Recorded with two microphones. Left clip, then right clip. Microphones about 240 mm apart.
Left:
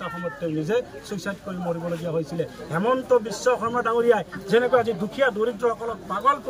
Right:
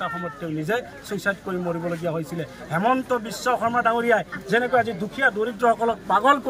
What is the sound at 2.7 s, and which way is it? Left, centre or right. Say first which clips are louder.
Speech: left 1 dB; right.